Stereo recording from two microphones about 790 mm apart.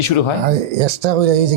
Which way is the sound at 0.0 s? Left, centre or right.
Left.